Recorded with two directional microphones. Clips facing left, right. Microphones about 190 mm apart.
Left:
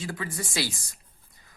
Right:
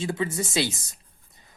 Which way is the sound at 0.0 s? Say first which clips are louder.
Right 6 dB; 25° right (ahead or behind).